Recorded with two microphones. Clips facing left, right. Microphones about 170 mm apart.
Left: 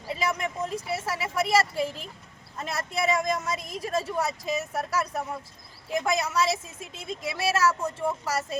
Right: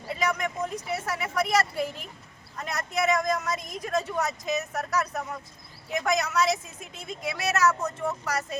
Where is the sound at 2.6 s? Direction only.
30° left (ahead or behind).